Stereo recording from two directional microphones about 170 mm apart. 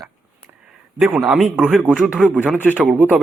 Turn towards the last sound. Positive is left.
turn(degrees=-10)  # may be behind; listen again after turning